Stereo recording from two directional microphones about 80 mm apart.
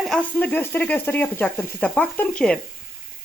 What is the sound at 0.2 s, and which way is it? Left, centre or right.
Speech, centre.